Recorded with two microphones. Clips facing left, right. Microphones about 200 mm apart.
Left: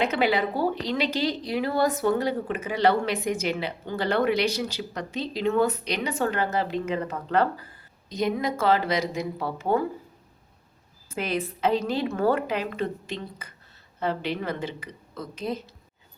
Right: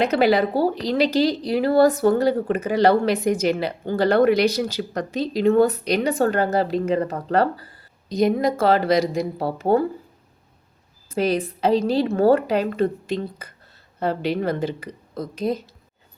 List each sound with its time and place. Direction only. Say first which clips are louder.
0.0 s a woman's voice: right 6 dB; 40° right (ahead or behind)
11.1 s a woman's voice: right 7 dB; 35° right (ahead or behind)